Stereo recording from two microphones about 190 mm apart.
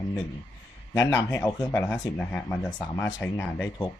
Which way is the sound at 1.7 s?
10° left (ahead or behind).